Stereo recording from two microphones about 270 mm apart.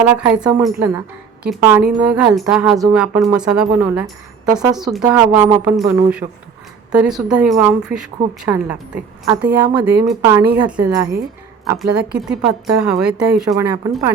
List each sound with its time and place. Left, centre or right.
0.1 s a woman's voice: centre
6.2 s speech: right
6.9 s a woman's voice: centre